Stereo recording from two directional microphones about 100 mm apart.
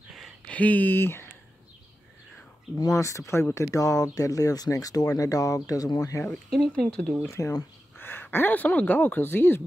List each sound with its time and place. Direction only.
0.5 s speech: 15° left (ahead or behind)
2.8 s speech: 30° left (ahead or behind)
6.5 s speech: 5° left (ahead or behind)
7.2 s speech: 30° left (ahead or behind)